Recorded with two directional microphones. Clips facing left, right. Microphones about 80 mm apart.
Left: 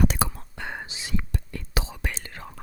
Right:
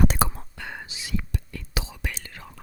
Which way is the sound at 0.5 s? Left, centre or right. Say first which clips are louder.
Left 2 dB; left.